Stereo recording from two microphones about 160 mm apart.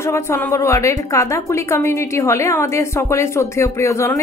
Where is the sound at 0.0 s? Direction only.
15° left (ahead or behind).